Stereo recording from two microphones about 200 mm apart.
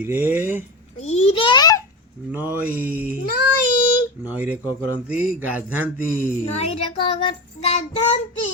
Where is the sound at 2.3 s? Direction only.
10° right (ahead or behind).